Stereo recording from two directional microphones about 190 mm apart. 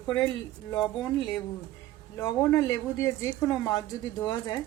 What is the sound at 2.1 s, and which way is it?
A woman's voice, 15° left (ahead or behind).